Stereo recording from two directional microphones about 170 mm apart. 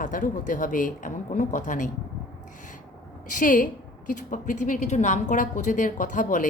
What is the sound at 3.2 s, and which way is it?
A woman's voice, 50° left (ahead or behind).